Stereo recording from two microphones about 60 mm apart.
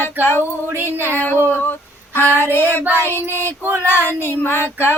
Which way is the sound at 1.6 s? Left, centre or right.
Left.